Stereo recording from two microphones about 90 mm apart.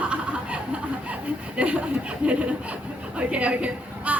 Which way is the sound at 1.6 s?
15° right (ahead or behind).